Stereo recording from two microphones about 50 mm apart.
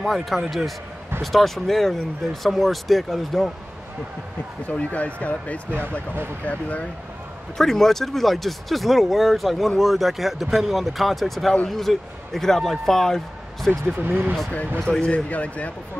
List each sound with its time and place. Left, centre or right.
0.0 s speech: centre
4.6 s speech: left
5.7 s speech: right
6.4 s speech: left
7.5 s speech: centre
14.0 s speech: right
14.9 s speech: left